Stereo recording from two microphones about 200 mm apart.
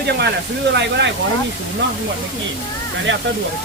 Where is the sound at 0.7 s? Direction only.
60° right (ahead or behind).